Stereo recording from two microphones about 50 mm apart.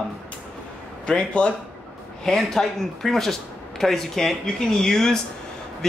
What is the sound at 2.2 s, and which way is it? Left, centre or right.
Speech, centre.